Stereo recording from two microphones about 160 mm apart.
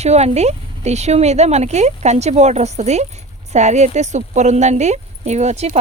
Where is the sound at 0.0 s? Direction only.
45° right (ahead or behind).